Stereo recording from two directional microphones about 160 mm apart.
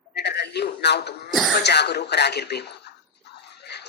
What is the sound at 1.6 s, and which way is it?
A woman's voice, 90° left.